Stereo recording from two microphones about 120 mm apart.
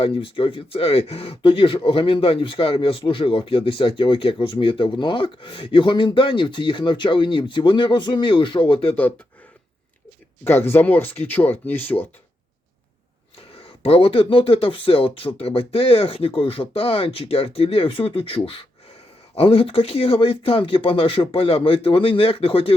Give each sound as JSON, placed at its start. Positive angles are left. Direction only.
{"t": 0.0, "sound": "speech", "side_deg": 50}
{"t": 10.4, "sound": "speech", "side_deg": 15}
{"t": 13.7, "sound": "speech", "side_deg": 50}